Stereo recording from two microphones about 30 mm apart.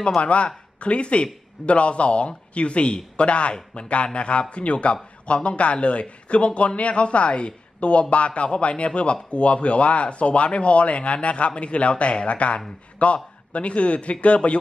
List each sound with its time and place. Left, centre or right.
0.2 s a man's voice: left